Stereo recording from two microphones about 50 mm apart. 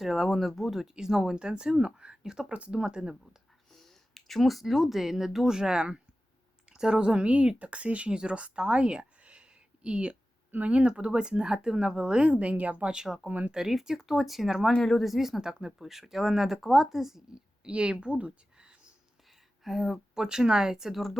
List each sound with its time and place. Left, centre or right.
0.0 s speech: centre
2.5 s speech: right
3.7 s speech: centre
11.9 s speech: right
12.8 s speech: centre
13.2 s speech: right
13.5 s speech: centre
14.7 s speech: centre
15.0 s speech: centre
19.6 s speech: centre
20.1 s speech: centre